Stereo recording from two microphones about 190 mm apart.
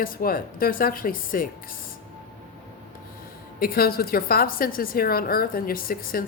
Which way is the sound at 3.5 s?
50° left (ahead or behind).